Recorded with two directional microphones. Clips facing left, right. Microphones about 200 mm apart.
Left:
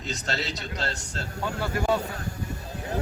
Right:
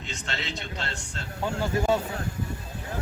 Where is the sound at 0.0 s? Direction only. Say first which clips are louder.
Left 4 dB; 40° left (ahead or behind).